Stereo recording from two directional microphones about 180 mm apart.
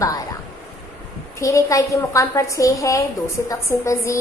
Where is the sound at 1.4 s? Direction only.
15° left (ahead or behind).